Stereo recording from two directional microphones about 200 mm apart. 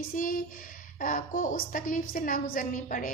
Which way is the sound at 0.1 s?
45° left (ahead or behind).